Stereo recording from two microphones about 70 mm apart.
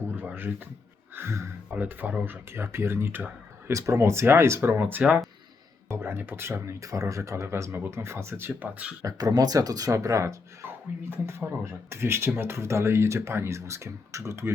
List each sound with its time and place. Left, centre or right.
0.2 s a sound: right
1.1 s speech: right
1.7 s speech: right
3.7 s speech: right
5.9 s speech: right
9.0 s speech: right
11.3 s speech: right